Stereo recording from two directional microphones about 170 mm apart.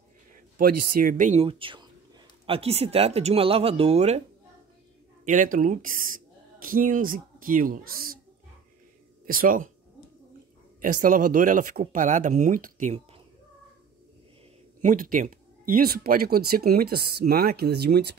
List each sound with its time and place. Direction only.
0.6 s speech: 55° right (ahead or behind); by 4.2 s 40° right (ahead or behind)
5.2 s speech: 50° right (ahead or behind)
9.2 s speech: 55° right (ahead or behind)
10.8 s speech: 50° right (ahead or behind)
14.8 s speech: 50° right (ahead or behind); by 18.1 s 75° right (ahead or behind)